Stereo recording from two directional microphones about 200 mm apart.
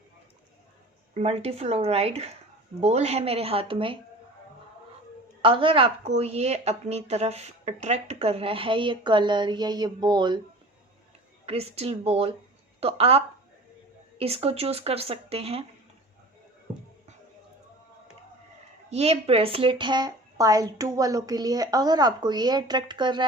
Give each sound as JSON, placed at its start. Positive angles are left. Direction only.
{"t": 1.1, "sound": "a woman's voice", "side_deg": -30}
{"t": 5.4, "sound": "a woman's voice", "side_deg": -25}
{"t": 11.4, "sound": "a woman's voice", "side_deg": -30}
{"t": 18.9, "sound": "a woman's voice", "side_deg": -30}